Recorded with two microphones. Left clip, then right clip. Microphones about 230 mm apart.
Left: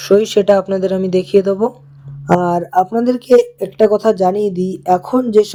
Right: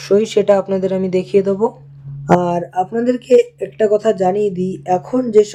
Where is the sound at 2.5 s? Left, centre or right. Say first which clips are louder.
Left 4 dB; left.